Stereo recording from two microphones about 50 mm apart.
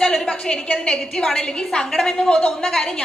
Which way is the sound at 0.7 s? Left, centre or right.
Left.